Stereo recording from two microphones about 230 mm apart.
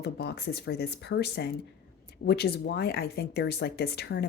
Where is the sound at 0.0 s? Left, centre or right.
Left.